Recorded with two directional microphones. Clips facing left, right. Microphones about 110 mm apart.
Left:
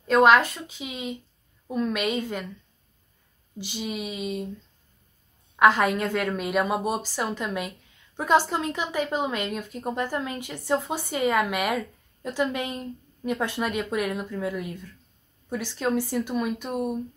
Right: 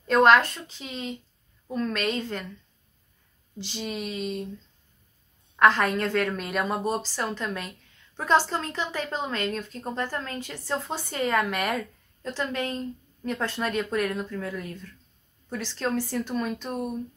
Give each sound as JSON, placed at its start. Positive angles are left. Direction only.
{"t": 0.0, "sound": "a woman's voice", "side_deg": 5}
{"t": 3.5, "sound": "a woman's voice", "side_deg": 10}
{"t": 5.6, "sound": "a woman's voice", "side_deg": 10}